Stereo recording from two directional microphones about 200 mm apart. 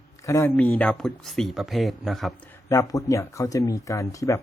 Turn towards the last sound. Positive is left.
turn(degrees=15)  # may be behind; listen again after turning